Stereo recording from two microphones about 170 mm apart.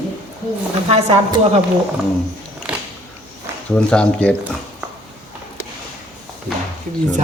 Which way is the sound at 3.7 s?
5° left (ahead or behind).